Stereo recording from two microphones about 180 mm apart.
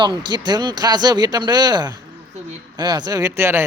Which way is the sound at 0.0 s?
25° right (ahead or behind).